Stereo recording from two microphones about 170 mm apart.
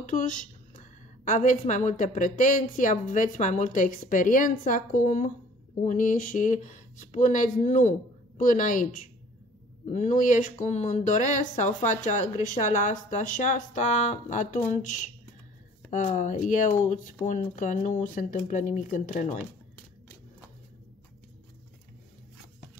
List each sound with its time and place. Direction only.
0.0 s a woman's voice: 50° left (ahead or behind)